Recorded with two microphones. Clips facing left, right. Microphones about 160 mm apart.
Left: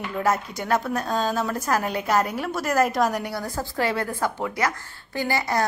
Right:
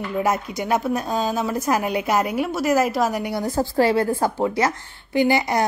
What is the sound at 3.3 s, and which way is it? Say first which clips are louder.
A woman's voice: right 8 dB; 25° right (ahead or behind).